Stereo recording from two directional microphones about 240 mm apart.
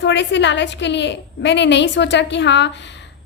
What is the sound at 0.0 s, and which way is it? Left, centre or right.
A woman's voice, left.